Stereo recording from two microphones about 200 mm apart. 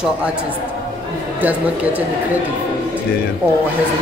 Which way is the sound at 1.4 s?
10° right (ahead or behind).